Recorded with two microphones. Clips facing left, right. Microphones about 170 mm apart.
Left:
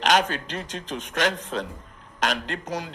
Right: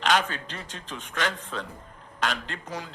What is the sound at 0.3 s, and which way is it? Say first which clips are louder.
A man's voice: left 6 dB; 80° left.